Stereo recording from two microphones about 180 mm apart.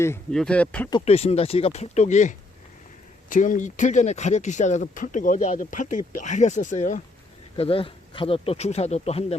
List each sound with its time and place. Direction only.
0.0 s speech: 15° left (ahead or behind)
0.9 s speech: 30° left (ahead or behind)
7.5 s speech: 30° left (ahead or behind)